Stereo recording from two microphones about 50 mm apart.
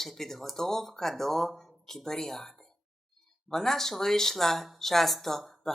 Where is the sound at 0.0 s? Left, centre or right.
Centre.